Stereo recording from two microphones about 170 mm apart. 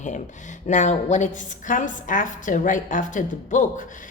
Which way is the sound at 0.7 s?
45° left (ahead or behind).